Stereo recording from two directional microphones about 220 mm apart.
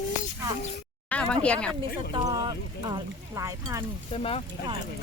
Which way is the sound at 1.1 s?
5° left (ahead or behind).